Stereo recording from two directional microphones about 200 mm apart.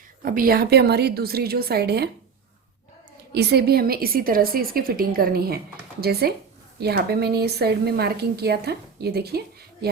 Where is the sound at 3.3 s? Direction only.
55° right (ahead or behind).